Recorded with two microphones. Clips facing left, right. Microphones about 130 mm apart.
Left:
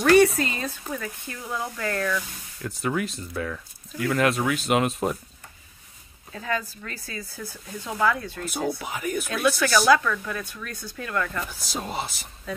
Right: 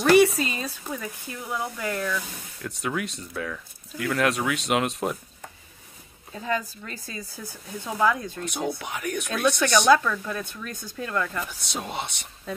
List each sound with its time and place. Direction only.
0.3 s speech: 20° right (ahead or behind)
2.1 s speech: centre (ahead or behind)
6.3 s speech: 20° right (ahead or behind)
8.4 s speech: centre (ahead or behind)
9.8 s speech: 25° right (ahead or behind)
11.4 s speech: centre (ahead or behind)